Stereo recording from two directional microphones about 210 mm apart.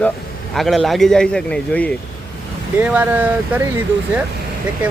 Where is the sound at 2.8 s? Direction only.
10° right (ahead or behind).